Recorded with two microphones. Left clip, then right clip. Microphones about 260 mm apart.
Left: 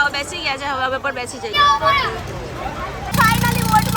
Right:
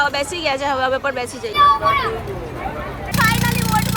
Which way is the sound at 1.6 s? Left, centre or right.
Left.